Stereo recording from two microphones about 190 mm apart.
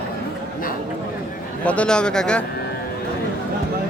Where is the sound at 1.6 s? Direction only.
5° left (ahead or behind).